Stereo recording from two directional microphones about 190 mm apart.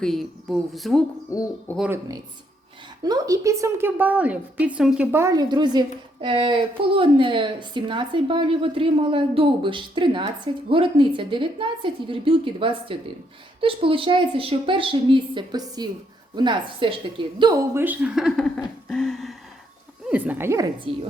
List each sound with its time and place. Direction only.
0.0 s speech: centre (ahead or behind)
1.3 s speech: 15° left (ahead or behind)
3.0 s a woman's voice: 20° right (ahead or behind)
20.9 s a woman's voice: 30° right (ahead or behind)